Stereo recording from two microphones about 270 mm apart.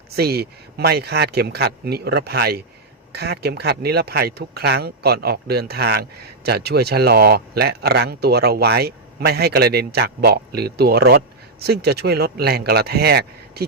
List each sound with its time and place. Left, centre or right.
0.2 s speech: right